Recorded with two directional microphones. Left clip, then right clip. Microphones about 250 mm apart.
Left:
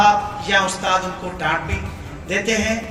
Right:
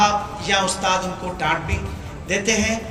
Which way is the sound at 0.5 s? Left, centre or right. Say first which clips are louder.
Left 3 dB; centre.